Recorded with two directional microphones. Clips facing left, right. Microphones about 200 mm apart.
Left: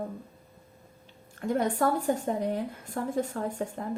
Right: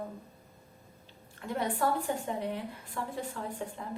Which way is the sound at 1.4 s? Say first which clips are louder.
Left 5 dB; 45° left (ahead or behind).